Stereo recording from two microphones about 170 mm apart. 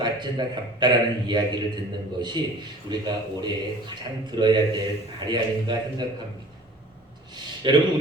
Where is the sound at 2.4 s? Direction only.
25° right (ahead or behind).